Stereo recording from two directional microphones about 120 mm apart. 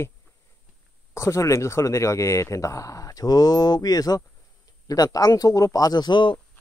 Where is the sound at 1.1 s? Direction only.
25° left (ahead or behind).